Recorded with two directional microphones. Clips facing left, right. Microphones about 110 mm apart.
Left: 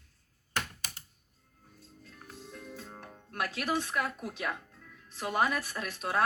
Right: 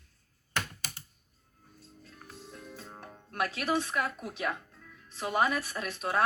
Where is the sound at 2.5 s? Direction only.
15° right (ahead or behind).